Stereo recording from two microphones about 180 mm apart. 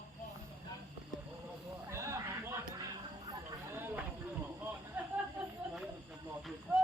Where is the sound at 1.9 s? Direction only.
15° right (ahead or behind).